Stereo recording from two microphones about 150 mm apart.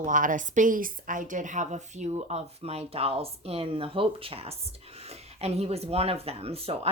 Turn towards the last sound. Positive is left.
turn(degrees=-40)  # may be behind; listen again after turning